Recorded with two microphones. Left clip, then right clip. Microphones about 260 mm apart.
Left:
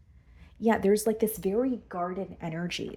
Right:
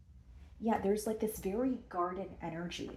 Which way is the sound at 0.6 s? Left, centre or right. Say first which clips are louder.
Left 9 dB; left.